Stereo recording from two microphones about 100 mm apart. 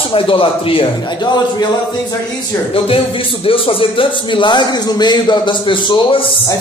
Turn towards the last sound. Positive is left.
turn(degrees=60)  # may be behind; listen again after turning